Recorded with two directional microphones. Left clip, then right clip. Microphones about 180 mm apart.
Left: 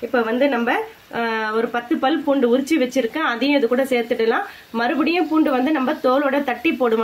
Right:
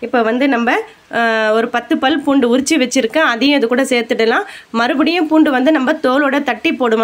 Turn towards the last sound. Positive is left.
turn(degrees=-40)  # may be behind; listen again after turning